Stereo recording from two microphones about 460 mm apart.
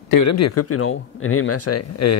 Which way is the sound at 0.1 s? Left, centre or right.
Left.